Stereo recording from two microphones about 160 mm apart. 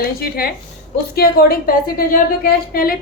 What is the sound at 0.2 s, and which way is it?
A woman's voice, 75° left (ahead or behind).